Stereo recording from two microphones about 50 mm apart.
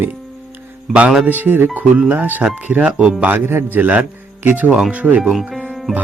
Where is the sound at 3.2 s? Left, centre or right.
Right.